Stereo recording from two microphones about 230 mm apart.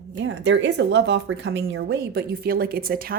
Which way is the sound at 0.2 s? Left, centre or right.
Right.